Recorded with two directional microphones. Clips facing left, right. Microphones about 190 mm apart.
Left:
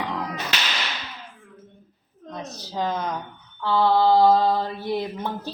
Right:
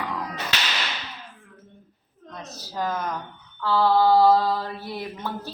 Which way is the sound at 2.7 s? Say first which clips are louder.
Left 1 dB; 20° left (ahead or behind).